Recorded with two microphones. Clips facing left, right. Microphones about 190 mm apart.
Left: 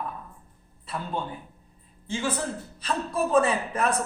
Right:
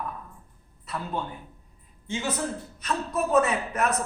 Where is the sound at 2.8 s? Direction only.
30° left (ahead or behind).